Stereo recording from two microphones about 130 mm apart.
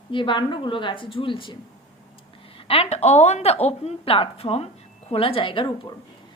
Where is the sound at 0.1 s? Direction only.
40° left (ahead or behind).